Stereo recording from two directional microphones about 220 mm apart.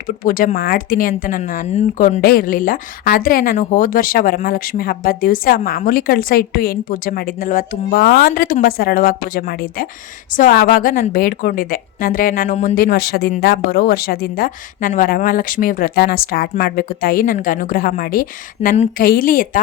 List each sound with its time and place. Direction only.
0.3 s speech: 40° left (ahead or behind)